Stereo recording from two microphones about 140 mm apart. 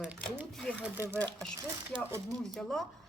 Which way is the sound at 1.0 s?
20° right (ahead or behind).